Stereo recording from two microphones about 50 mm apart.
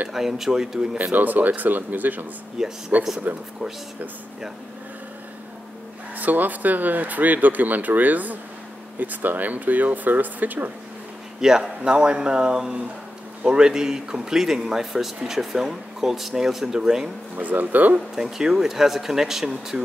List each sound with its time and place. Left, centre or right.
0.1 s speech: centre
1.1 s speech: right
2.6 s speech: centre
3.3 s speech: right
6.1 s speech: right
11.4 s speech: centre
17.4 s speech: right
18.1 s speech: centre